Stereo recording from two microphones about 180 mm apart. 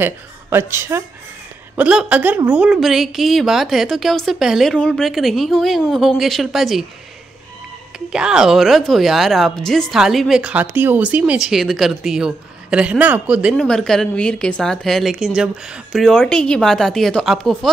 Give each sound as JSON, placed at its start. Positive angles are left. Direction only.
{"t": 0.0, "sound": "speech", "side_deg": -10}
{"t": 8.1, "sound": "speech", "side_deg": -5}